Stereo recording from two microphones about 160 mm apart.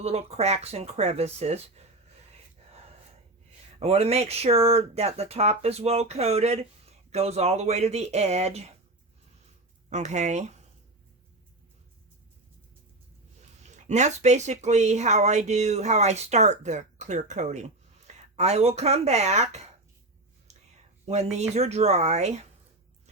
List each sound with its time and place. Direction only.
0.0 s speech: 40° right (ahead or behind)
3.8 s speech: 40° right (ahead or behind)
9.9 s speech: 45° right (ahead or behind)
13.6 s speech: 45° right (ahead or behind)
20.5 s a sound: 45° right (ahead or behind)
21.1 s speech: 45° right (ahead or behind)